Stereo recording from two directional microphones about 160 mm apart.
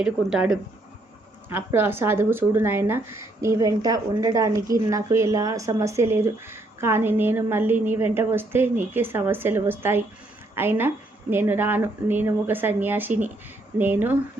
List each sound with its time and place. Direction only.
0.3 s speech: 5° right (ahead or behind)